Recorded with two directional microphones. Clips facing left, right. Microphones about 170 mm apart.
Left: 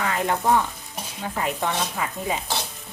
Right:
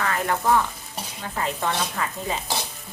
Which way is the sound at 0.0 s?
20° left (ahead or behind).